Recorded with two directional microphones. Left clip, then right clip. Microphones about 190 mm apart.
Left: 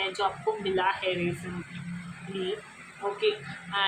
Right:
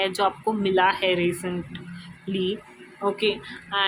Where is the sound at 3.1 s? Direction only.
45° right (ahead or behind).